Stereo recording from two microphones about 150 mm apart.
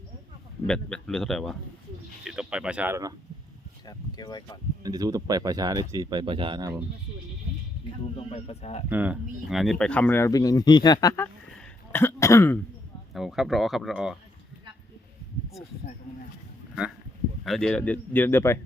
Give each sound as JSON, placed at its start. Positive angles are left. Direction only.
{"t": 0.7, "sound": "speech", "side_deg": 5}
{"t": 3.8, "sound": "speech", "side_deg": 25}
{"t": 4.8, "sound": "speech", "side_deg": -25}
{"t": 8.1, "sound": "speech", "side_deg": 40}
{"t": 8.9, "sound": "speech", "side_deg": -10}
{"t": 11.5, "sound": "throat clearing", "side_deg": 15}
{"t": 13.1, "sound": "speech", "side_deg": 0}
{"t": 17.4, "sound": "speech", "side_deg": 5}